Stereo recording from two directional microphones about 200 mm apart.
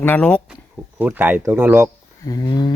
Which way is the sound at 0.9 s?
10° right (ahead or behind).